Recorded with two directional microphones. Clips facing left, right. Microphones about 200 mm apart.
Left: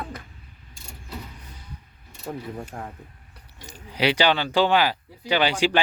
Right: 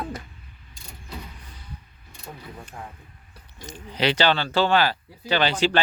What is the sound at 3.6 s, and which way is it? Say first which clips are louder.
Speech: left 1 dB; 10° left (ahead or behind).